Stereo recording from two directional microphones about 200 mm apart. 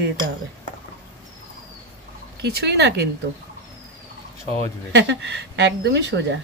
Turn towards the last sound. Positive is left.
turn(degrees=-60)  # may be behind; listen again after turning